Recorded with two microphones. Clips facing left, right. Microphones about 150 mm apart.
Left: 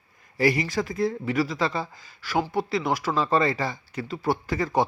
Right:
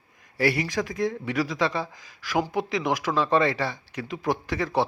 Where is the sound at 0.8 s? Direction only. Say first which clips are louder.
Left 1 dB; 5° left (ahead or behind).